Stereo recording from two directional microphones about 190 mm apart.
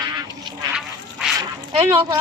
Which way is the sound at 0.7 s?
Centre (ahead or behind).